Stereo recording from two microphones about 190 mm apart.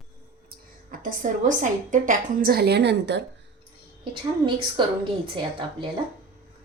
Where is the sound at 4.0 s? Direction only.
25° right (ahead or behind).